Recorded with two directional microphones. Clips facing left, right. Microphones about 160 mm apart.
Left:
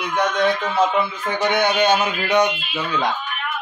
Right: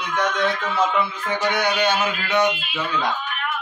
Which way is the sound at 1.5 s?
20° left (ahead or behind).